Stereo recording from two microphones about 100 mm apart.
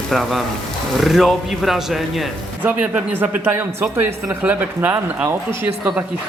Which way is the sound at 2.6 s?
15° right (ahead or behind).